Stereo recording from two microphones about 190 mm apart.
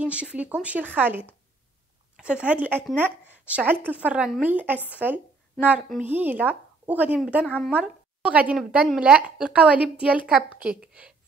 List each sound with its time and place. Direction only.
0.0 s speech: 5° right (ahead or behind)
7.4 s speech: 5° left (ahead or behind)
7.7 s a woman's voice: 5° right (ahead or behind)